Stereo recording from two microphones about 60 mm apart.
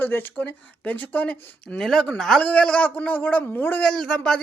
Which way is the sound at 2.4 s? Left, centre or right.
Left.